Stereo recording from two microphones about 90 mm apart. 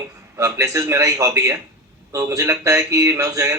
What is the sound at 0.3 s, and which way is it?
Speech, 35° right (ahead or behind).